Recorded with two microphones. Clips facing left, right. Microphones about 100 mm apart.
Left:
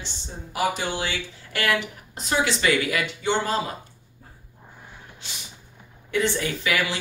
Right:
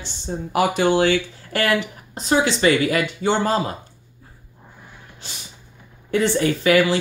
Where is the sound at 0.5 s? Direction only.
70° right (ahead or behind).